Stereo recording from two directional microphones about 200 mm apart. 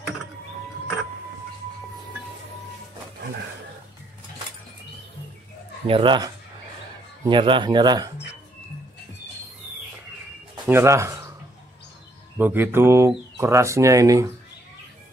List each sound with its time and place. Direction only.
5.9 s speech: 25° right (ahead or behind)
10.7 s speech: 15° right (ahead or behind)
12.4 s speech: 10° right (ahead or behind)